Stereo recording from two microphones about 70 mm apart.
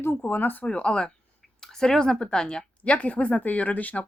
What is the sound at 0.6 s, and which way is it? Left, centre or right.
Speech, centre.